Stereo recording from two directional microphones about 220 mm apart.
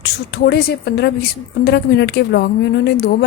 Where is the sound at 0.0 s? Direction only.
50° left (ahead or behind).